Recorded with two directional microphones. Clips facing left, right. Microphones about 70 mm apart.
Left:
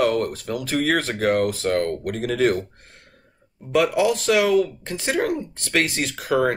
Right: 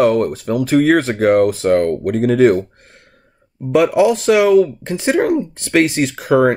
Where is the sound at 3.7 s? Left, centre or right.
Right.